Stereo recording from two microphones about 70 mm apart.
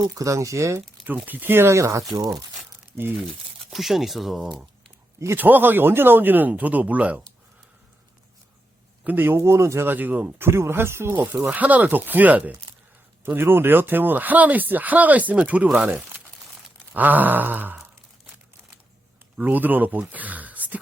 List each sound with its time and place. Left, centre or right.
0.1 s speech: right
1.0 s speech: right
3.7 s speech: centre
5.4 s speech: right
9.0 s speech: right
9.8 s speech: right
11.5 s speech: right
19.4 s speech: right